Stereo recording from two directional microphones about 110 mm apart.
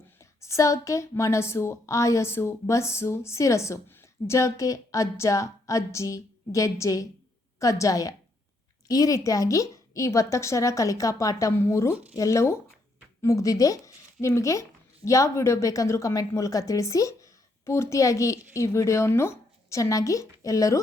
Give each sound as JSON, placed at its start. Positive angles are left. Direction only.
{"t": 0.2, "sound": "a woman's voice", "side_deg": 25}